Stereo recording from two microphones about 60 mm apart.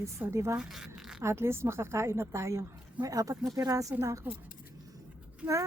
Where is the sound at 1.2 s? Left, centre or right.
Right.